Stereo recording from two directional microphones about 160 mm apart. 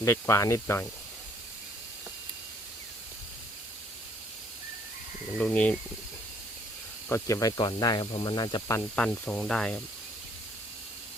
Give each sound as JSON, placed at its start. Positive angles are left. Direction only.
{"t": 0.0, "sound": "speech", "side_deg": 20}
{"t": 5.4, "sound": "speech", "side_deg": 10}
{"t": 7.1, "sound": "speech", "side_deg": 20}
{"t": 9.0, "sound": "speech", "side_deg": 10}